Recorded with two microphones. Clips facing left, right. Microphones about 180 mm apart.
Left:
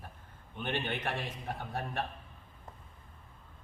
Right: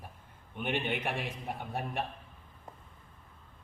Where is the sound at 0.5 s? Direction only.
10° right (ahead or behind).